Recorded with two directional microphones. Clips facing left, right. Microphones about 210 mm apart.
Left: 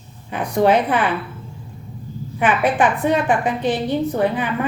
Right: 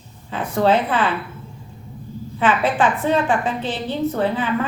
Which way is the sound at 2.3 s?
15° left (ahead or behind).